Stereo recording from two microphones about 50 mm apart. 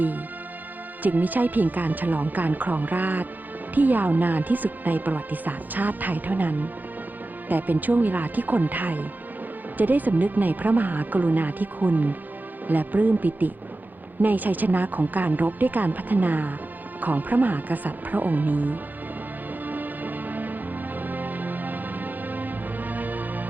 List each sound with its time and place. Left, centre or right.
1.0 s speech: right
19.6 s music: right